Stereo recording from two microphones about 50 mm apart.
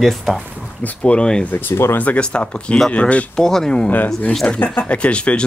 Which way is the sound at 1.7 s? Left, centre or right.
Left.